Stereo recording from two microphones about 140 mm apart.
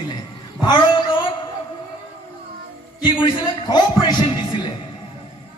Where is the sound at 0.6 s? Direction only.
30° left (ahead or behind).